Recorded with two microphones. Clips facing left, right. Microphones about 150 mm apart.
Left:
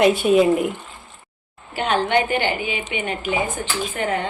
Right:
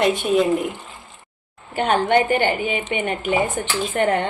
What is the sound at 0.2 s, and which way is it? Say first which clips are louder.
Speech: left 3 dB; 5° left (ahead or behind).